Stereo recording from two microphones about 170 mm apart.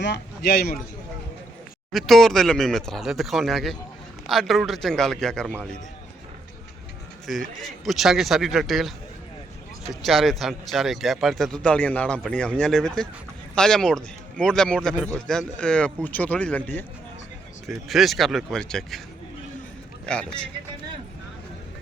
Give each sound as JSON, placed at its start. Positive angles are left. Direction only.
{"t": 0.0, "sound": "a man's voice", "side_deg": 80}
{"t": 1.9, "sound": "a man's voice", "side_deg": 0}
{"t": 7.3, "sound": "a man's voice", "side_deg": 0}
{"t": 9.9, "sound": "a man's voice", "side_deg": 0}
{"t": 20.1, "sound": "a man's voice", "side_deg": 5}